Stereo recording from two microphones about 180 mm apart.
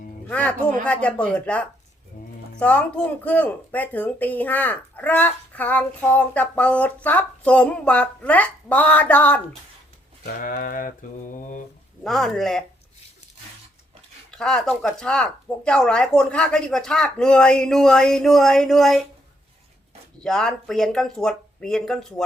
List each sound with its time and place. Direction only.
0.3 s speech: 10° left (ahead or behind)
10.2 s mantra: 55° left (ahead or behind)
12.0 s speech: centre (ahead or behind)
14.3 s speech: 5° left (ahead or behind)
20.2 s speech: 5° left (ahead or behind)